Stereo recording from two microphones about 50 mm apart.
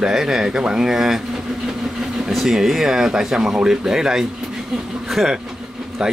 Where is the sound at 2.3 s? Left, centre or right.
Centre.